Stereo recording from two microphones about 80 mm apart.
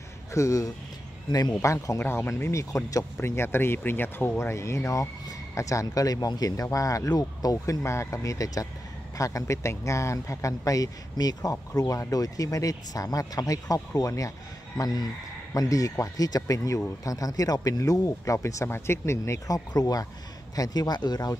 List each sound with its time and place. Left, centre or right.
0.3 s speech: left
1.3 s speech: left
3.2 s speech: left
7.6 s speech: left
14.8 s speech: left